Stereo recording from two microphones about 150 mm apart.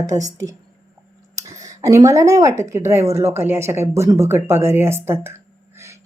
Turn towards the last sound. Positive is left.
turn(degrees=-15)  # may be behind; listen again after turning